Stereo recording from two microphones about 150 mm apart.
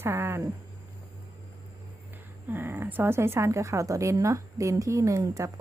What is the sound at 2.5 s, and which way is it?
Speech, 15° right (ahead or behind).